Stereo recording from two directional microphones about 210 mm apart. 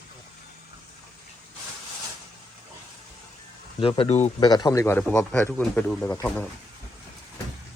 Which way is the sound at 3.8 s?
25° left (ahead or behind).